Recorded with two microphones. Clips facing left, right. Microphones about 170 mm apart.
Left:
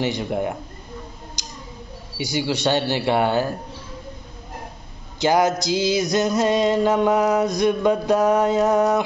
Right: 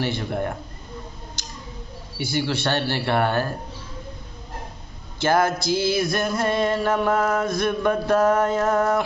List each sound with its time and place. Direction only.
0.0 s music: 15° left (ahead or behind)
1.4 s tick-tock: 15° left (ahead or behind)
2.1 s music: 15° left (ahead or behind)
5.2 s music: 15° left (ahead or behind)